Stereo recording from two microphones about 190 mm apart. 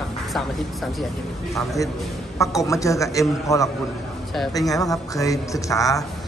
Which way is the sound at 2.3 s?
15° left (ahead or behind).